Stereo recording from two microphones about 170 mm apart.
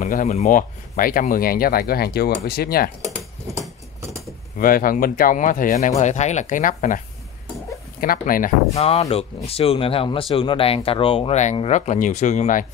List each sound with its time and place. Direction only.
0.0 s speech: 50° left (ahead or behind); by 2.9 s 65° left (ahead or behind)
4.6 s speech: 55° left (ahead or behind)
8.0 s speech: 55° left (ahead or behind)
8.7 s speech: 35° left (ahead or behind)